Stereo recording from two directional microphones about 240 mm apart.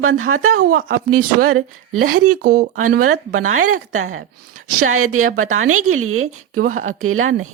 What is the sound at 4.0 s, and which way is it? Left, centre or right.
A woman's voice, right.